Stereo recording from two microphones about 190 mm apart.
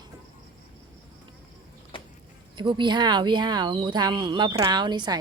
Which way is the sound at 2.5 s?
25° right (ahead or behind).